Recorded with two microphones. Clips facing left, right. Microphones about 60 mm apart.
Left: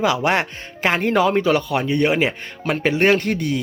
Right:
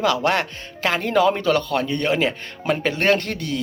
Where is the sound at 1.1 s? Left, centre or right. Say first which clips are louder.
Right 1 dB; centre.